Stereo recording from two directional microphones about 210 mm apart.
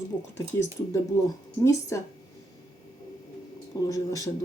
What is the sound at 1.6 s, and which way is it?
Speech, 15° left (ahead or behind).